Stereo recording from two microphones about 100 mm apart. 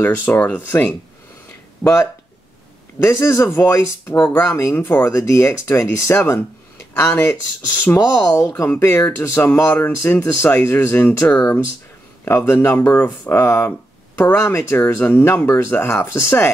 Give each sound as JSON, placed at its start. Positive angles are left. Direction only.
{"t": 0.0, "sound": "speech", "side_deg": 20}
{"t": 1.8, "sound": "speech", "side_deg": 0}
{"t": 3.0, "sound": "speech", "side_deg": 25}
{"t": 8.3, "sound": "speech", "side_deg": 35}
{"t": 8.7, "sound": "speech", "side_deg": 25}